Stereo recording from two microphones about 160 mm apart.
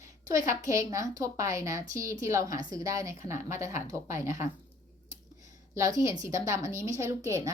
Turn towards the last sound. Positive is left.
turn(degrees=-20)  # may be behind; listen again after turning